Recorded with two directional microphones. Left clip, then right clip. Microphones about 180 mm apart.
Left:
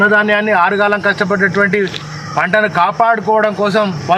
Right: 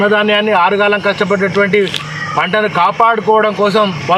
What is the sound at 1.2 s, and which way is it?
A man's voice, 15° left (ahead or behind).